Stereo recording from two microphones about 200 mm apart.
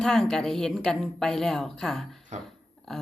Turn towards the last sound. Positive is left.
turn(degrees=0)  # may be behind; listen again after turning